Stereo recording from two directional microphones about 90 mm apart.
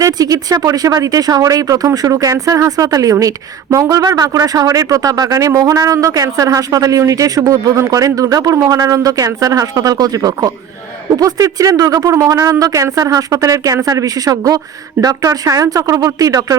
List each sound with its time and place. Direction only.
0.0 s speech: 45° right (ahead or behind)